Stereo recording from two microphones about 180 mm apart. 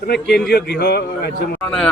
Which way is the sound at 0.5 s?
65° left (ahead or behind).